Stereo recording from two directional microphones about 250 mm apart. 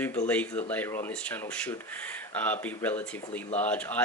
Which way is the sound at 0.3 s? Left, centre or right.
Centre.